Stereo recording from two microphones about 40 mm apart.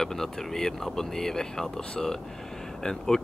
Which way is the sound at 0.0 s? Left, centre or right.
Centre.